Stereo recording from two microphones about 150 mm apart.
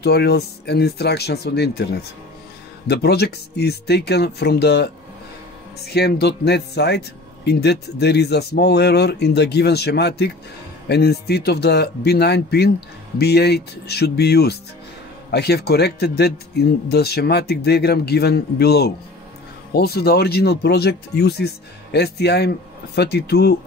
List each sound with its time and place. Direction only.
0.0 s speech: 90° left
2.9 s speech: 90° left